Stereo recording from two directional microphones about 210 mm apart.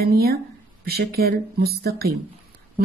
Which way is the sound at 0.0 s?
45° right (ahead or behind).